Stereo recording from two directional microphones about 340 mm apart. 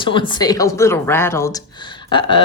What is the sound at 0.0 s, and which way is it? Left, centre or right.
Speech, centre.